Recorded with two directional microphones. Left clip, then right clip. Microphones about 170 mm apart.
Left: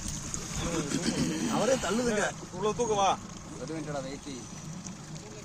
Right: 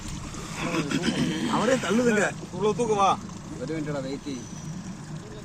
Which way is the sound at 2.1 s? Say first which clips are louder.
Right 5 dB; 45° right (ahead or behind).